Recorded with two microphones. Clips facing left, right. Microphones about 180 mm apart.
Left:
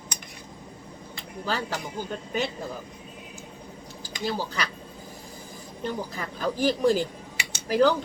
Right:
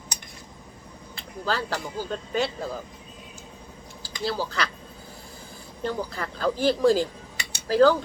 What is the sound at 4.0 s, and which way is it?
Speech, 15° left (ahead or behind).